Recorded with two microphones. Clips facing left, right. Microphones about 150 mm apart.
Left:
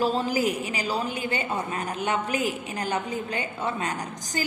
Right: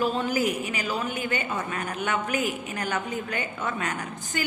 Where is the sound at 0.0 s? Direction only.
35° left (ahead or behind).